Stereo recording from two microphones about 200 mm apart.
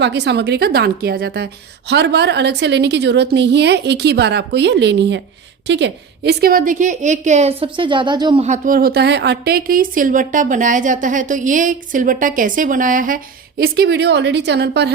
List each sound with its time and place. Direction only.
0.0 s a woman's voice: 60° right (ahead or behind); by 8.4 s 25° right (ahead or behind)
8.4 s a woman's voice: 40° right (ahead or behind)
13.6 s a woman's voice: 55° right (ahead or behind)